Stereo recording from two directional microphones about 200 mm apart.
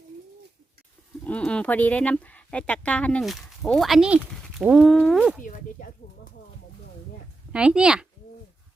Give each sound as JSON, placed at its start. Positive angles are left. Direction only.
{"t": 1.2, "sound": "speech", "side_deg": 5}
{"t": 5.4, "sound": "chop", "side_deg": 40}
{"t": 7.5, "sound": "speech", "side_deg": -5}